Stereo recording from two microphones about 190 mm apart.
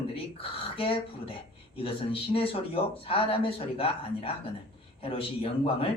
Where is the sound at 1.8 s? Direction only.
30° left (ahead or behind).